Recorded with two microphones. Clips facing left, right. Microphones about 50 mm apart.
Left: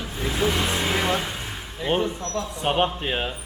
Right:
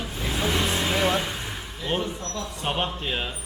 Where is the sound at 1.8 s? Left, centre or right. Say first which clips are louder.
Left 4 dB; centre.